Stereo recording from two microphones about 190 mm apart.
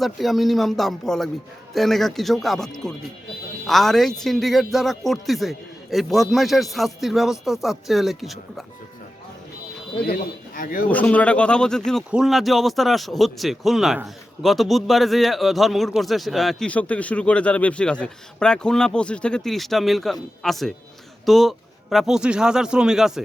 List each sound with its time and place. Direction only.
0.0 s speech: centre (ahead or behind)
3.7 s speech: centre (ahead or behind)
10.0 s a man's voice: 50° left (ahead or behind)
10.8 s speech: 5° left (ahead or behind)